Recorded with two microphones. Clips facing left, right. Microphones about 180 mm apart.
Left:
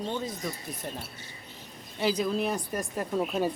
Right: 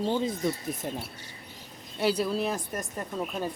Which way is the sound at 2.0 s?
5° right (ahead or behind).